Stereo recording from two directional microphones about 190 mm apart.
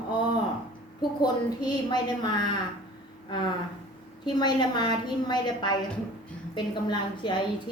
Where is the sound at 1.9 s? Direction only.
20° left (ahead or behind).